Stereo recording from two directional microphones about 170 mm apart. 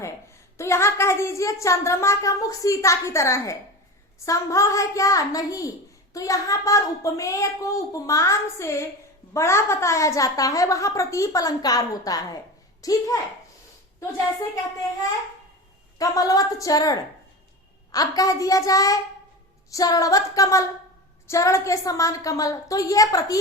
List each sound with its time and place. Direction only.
0.0 s a woman's voice: 15° left (ahead or behind)
16.0 s a woman's voice: 20° left (ahead or behind)